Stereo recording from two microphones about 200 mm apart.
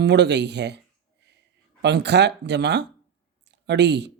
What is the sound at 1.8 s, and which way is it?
Speech, 60° right (ahead or behind).